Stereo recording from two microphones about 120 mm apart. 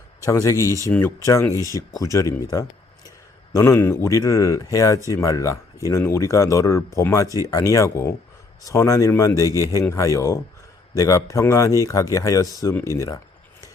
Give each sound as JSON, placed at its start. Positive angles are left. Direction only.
{"t": 0.3, "sound": "speech", "side_deg": 25}